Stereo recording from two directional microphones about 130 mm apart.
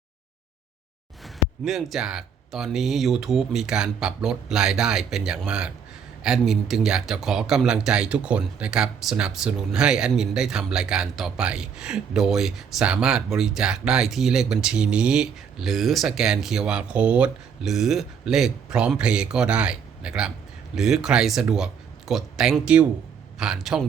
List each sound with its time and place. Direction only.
1.2 s speech: centre (ahead or behind)